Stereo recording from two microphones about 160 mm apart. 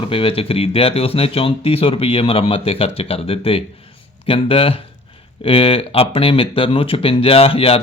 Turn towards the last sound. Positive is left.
turn(degrees=35)  # may be behind; listen again after turning